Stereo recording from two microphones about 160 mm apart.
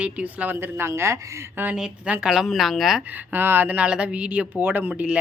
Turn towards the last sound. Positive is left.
turn(degrees=-10)  # may be behind; listen again after turning